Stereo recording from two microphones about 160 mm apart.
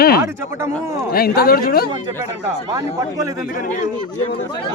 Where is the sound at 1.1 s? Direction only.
75° left (ahead or behind).